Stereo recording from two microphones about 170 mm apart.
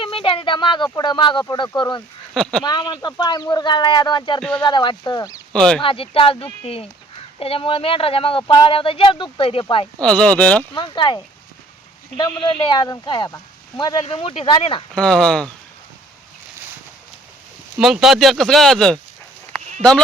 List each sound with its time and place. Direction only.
0.0 s speech: 30° left (ahead or behind)
2.3 s speech: 5° left (ahead or behind)
2.6 s speech: 25° left (ahead or behind)
4.4 s speech: 5° left (ahead or behind)
4.6 s speech: 25° left (ahead or behind)
5.5 s speech: 5° left (ahead or behind)
5.8 s speech: 30° left (ahead or behind)
10.0 s speech: 5° left (ahead or behind)
10.8 s speech: 25° left (ahead or behind)
14.9 s speech: 5° left (ahead or behind)
17.7 s speech: 5° right (ahead or behind)